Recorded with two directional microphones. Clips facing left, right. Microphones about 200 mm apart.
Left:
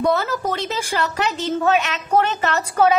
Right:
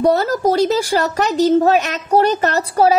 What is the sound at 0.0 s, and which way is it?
Speech, 40° right (ahead or behind).